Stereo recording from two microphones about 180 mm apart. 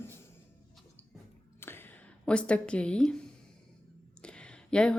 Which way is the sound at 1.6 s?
10° left (ahead or behind).